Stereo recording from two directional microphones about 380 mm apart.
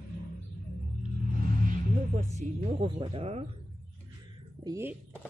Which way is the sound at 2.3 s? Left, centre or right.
Centre.